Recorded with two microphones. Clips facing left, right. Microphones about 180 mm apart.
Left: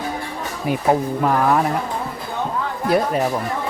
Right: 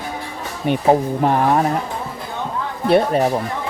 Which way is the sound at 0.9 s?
25° right (ahead or behind).